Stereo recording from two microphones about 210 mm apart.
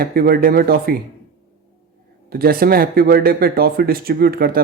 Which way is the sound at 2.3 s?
45° right (ahead or behind).